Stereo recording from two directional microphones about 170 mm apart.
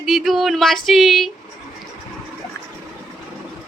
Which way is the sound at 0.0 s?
Centre (ahead or behind).